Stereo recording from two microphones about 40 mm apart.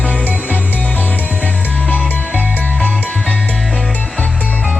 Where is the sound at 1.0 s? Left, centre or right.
Left.